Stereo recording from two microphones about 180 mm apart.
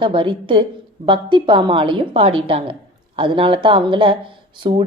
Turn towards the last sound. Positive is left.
turn(degrees=-25)  # may be behind; listen again after turning